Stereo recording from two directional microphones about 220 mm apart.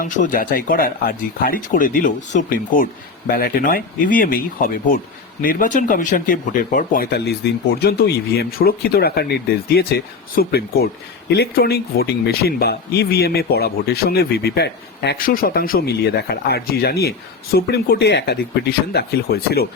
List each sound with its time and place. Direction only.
0.0 s speech: 40° left (ahead or behind)